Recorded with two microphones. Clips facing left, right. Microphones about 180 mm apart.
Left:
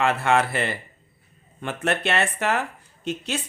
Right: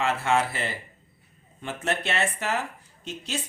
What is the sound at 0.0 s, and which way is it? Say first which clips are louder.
A woman's voice: left 3 dB; 60° left (ahead or behind).